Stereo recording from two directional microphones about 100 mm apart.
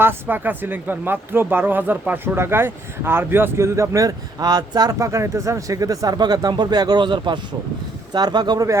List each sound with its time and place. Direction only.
0.0 s speech: 20° right (ahead or behind)